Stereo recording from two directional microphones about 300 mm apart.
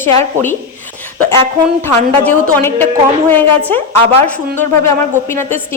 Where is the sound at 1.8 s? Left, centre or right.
Centre.